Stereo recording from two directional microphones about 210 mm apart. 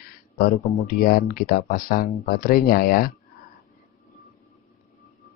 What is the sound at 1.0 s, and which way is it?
Speech, 45° left (ahead or behind).